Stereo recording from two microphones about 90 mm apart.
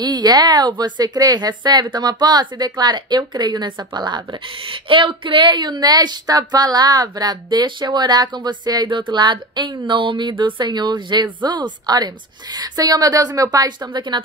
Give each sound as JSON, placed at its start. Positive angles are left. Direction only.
{"t": 0.0, "sound": "a woman's voice", "side_deg": -50}